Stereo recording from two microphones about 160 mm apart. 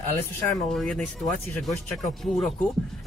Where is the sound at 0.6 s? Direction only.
5° left (ahead or behind).